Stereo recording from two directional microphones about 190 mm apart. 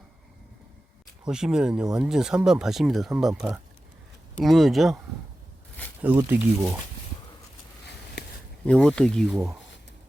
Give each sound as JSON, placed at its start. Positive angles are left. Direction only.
{"t": 1.3, "sound": "speech", "side_deg": -5}
{"t": 6.0, "sound": "speech", "side_deg": -10}
{"t": 8.2, "sound": "a sound", "side_deg": 60}
{"t": 8.6, "sound": "speech", "side_deg": 5}